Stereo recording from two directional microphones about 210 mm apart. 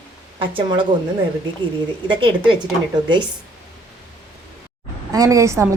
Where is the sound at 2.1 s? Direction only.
25° right (ahead or behind).